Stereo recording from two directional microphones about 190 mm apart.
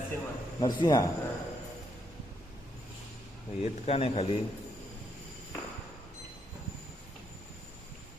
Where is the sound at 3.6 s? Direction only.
30° left (ahead or behind).